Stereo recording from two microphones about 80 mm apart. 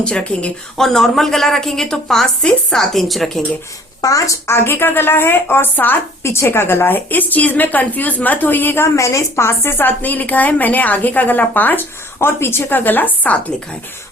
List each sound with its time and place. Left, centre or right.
0.0 s a woman's voice: centre
4.0 s a woman's voice: left
4.4 s a woman's voice: left
6.2 s a woman's voice: left